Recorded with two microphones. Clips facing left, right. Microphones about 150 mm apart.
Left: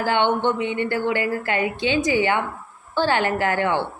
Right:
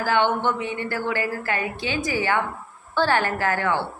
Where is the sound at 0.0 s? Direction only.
20° left (ahead or behind).